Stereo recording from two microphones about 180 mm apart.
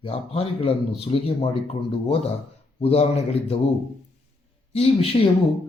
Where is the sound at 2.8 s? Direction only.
35° left (ahead or behind).